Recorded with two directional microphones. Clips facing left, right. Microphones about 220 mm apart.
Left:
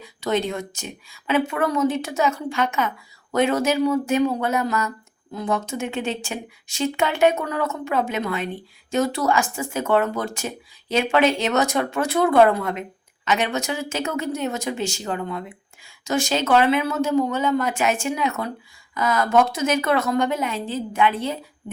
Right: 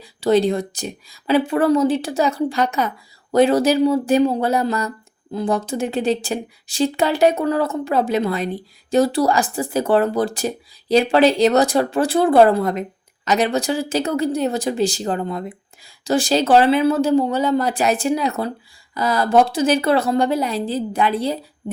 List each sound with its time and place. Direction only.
0.0 s a woman's voice: 35° right (ahead or behind)